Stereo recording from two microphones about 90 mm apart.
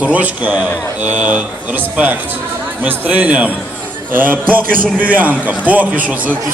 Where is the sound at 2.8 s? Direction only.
15° right (ahead or behind).